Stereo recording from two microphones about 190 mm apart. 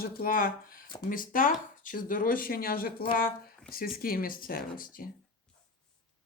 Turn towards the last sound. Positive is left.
turn(degrees=50)  # may be behind; listen again after turning